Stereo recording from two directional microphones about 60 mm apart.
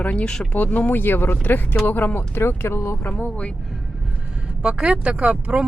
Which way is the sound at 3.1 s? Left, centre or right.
Left.